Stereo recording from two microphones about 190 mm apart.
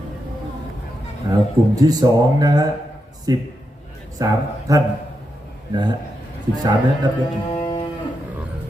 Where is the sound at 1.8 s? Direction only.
20° right (ahead or behind).